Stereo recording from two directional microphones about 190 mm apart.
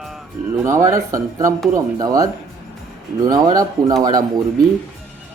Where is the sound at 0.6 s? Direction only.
15° right (ahead or behind).